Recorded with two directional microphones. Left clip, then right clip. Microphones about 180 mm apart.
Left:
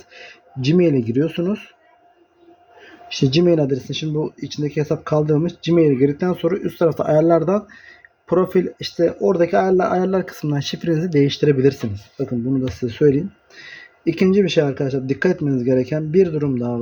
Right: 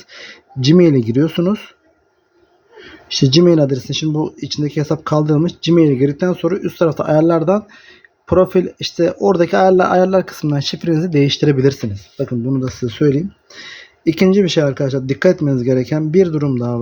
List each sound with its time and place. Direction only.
0.1 s speech: 50° right (ahead or behind)
3.1 s speech: 45° right (ahead or behind)